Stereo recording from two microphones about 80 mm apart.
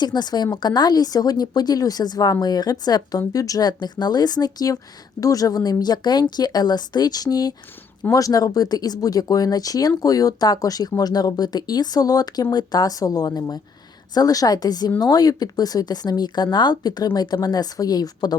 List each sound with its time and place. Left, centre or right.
0.0 s speech: left